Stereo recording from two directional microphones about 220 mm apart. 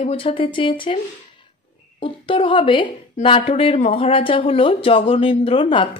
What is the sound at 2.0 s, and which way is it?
A woman's voice, 25° left (ahead or behind).